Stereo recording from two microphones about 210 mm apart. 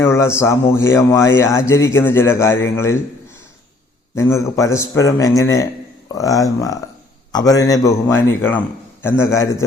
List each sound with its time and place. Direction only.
0.0 s speech: 15° left (ahead or behind)
4.1 s speech: 15° left (ahead or behind)